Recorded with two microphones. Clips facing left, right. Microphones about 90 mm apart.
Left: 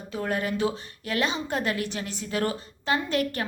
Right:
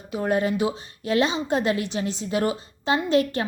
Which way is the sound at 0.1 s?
20° right (ahead or behind).